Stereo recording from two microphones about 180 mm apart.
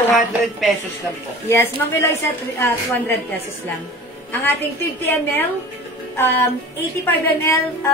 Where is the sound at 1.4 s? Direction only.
15° left (ahead or behind).